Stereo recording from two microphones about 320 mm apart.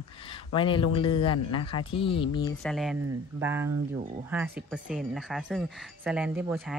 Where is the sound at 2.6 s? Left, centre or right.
Centre.